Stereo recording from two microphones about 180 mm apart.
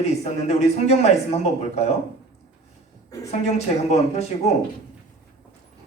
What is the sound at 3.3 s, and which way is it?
Speech, 35° left (ahead or behind).